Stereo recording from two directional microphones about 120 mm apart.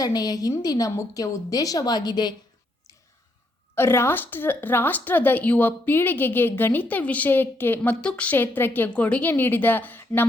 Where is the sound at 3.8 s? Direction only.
20° left (ahead or behind).